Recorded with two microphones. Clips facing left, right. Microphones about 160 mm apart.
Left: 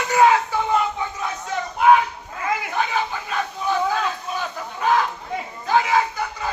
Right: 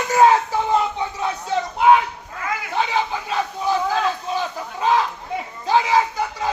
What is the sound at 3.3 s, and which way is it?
Crowd, 30° right (ahead or behind).